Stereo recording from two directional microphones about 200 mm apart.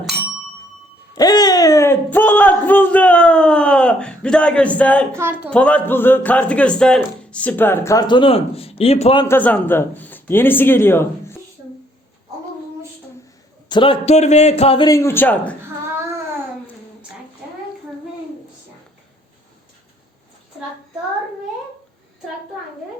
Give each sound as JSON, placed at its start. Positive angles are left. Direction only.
{"t": 1.1, "sound": "a sound", "side_deg": 20}
{"t": 5.1, "sound": "speech", "side_deg": -10}
{"t": 5.5, "sound": "speech", "side_deg": 5}
{"t": 9.2, "sound": "speech", "side_deg": 10}
{"t": 13.7, "sound": "a man's voice", "side_deg": 25}